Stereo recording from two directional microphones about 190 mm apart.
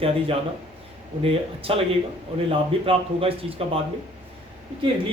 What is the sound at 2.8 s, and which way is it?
Speech, 30° right (ahead or behind).